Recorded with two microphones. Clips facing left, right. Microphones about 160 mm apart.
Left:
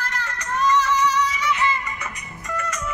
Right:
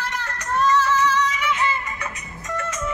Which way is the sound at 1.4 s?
15° right (ahead or behind).